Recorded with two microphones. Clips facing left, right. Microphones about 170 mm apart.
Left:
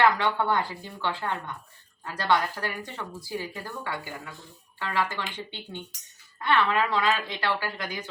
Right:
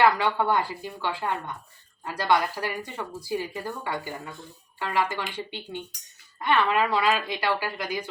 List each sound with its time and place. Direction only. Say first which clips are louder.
0.0 s speech: right 1 dB; 10° right (ahead or behind)